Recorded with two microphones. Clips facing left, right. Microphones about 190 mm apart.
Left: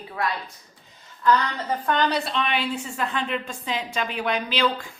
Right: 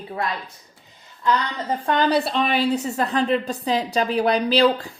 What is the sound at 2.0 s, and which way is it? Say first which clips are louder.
A woman's voice: right 4 dB; 30° right (ahead or behind).